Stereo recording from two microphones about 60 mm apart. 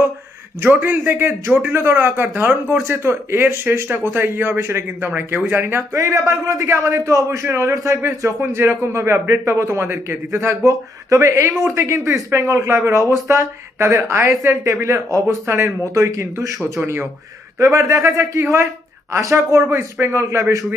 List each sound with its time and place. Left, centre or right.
0.7 s speech: right
2.9 s speech: right
3.4 s speech: right
5.0 s speech: right
5.9 s speech: right
10.3 s speech: right
13.1 s speech: right
16.8 s speech: right
17.6 s speech: right